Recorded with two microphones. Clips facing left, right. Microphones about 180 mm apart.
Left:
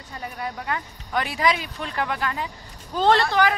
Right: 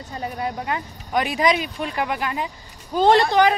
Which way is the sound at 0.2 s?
25° right (ahead or behind).